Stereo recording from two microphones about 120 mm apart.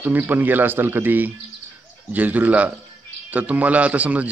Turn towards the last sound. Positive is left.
turn(degrees=-10)  # may be behind; listen again after turning